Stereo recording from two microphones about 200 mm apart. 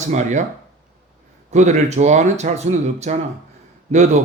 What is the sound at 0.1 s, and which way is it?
Speech, 35° right (ahead or behind).